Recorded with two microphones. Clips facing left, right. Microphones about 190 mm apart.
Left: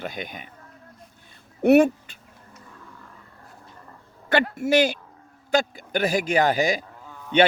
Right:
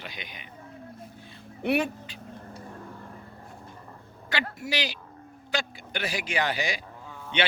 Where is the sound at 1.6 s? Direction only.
50° left (ahead or behind).